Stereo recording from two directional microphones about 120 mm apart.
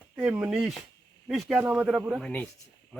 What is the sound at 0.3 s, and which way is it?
Speech, 10° right (ahead or behind).